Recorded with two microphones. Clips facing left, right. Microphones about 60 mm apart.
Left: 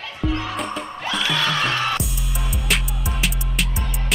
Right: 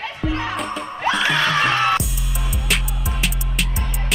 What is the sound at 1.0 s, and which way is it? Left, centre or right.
Music, right.